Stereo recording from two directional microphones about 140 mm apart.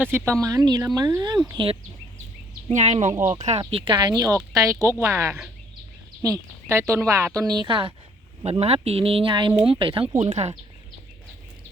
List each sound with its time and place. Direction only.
0.0 s speech: 15° right (ahead or behind)
0.4 s speech: 25° right (ahead or behind)
2.6 s speech: 55° right (ahead or behind)
3.7 s speech: 40° right (ahead or behind)
10.2 s speech: 50° right (ahead or behind)